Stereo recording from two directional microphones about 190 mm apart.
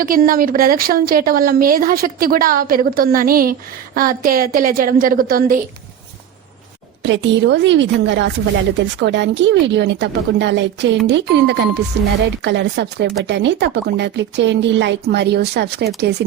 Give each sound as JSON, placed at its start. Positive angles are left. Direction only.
{"t": 0.0, "sound": "a woman's voice", "side_deg": -45}
{"t": 7.0, "sound": "a woman's voice", "side_deg": -70}